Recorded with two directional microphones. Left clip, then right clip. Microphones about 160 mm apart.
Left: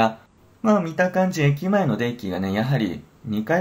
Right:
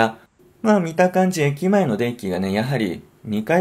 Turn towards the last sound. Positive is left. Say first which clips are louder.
# right 3 dB
turn(degrees=-40)  # may be behind; listen again after turning